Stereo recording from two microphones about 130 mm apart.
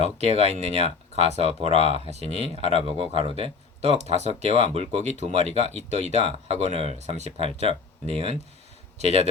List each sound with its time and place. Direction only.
0.0 s speech: 55° right (ahead or behind)